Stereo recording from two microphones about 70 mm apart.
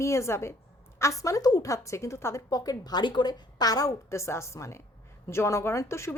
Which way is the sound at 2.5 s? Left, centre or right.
Left.